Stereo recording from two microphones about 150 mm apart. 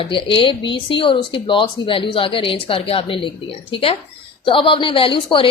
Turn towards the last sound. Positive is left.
turn(degrees=35)  # may be behind; listen again after turning